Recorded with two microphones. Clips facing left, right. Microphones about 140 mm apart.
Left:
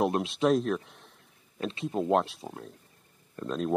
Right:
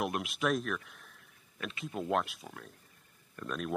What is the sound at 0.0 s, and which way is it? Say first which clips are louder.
Speech: left 7 dB; 30° left (ahead or behind).